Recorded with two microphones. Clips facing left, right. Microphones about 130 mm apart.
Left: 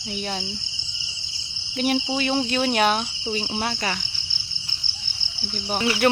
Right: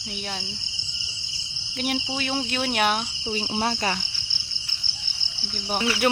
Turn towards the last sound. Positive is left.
turn(degrees=-10)  # may be behind; listen again after turning